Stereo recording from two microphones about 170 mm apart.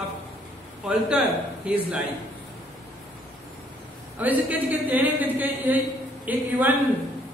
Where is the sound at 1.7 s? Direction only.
5° right (ahead or behind).